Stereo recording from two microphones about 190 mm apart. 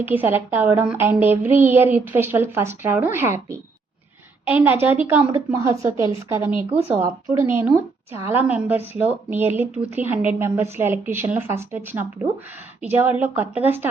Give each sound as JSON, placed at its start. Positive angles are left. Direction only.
{"t": 0.0, "sound": "a woman's voice", "side_deg": -10}
{"t": 6.7, "sound": "speech", "side_deg": -30}
{"t": 7.0, "sound": "a woman's voice", "side_deg": -15}